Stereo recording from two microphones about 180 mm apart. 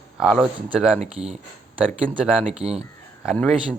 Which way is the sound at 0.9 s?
35° right (ahead or behind).